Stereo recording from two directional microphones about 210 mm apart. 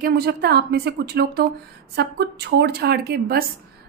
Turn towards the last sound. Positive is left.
turn(degrees=-45)  # may be behind; listen again after turning